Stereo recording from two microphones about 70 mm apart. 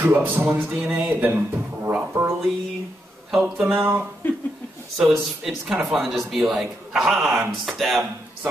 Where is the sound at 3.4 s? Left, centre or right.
Right.